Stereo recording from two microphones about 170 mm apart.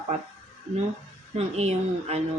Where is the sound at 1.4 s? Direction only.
40° right (ahead or behind).